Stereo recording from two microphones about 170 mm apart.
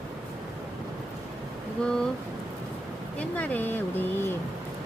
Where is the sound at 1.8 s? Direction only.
5° left (ahead or behind).